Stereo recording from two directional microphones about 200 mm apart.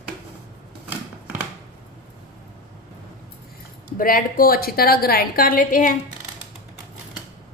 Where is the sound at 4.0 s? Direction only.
45° left (ahead or behind).